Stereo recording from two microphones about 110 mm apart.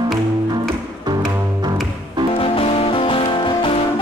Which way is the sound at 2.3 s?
55° left (ahead or behind).